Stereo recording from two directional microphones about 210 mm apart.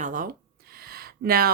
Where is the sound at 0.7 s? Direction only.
45° right (ahead or behind).